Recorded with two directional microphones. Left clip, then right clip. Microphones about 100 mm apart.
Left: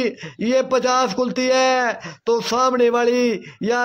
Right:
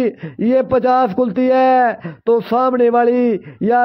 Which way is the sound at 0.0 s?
35° right (ahead or behind).